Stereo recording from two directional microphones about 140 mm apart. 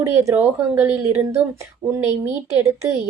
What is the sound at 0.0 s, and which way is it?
A woman's voice, 20° right (ahead or behind).